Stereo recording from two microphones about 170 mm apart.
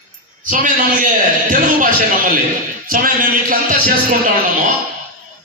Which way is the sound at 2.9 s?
55° right (ahead or behind).